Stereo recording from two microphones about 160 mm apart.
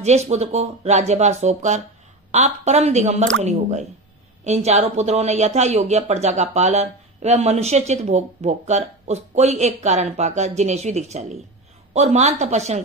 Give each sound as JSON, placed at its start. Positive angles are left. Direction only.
{"t": 0.0, "sound": "speech", "side_deg": -45}
{"t": 4.5, "sound": "speech", "side_deg": -45}